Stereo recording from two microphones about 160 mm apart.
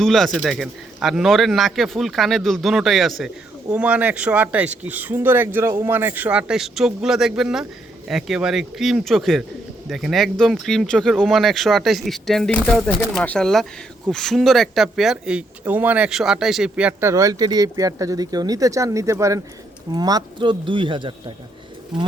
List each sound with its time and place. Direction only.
0.0 s speech: centre (ahead or behind)
17.1 s speech: 20° right (ahead or behind)